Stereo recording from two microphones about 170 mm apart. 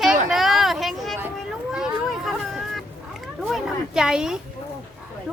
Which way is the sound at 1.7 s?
Centre (ahead or behind).